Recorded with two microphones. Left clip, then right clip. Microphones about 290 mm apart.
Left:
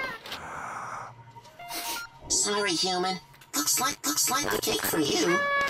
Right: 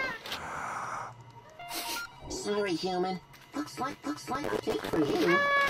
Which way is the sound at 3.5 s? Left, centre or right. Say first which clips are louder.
Left 8 dB; left.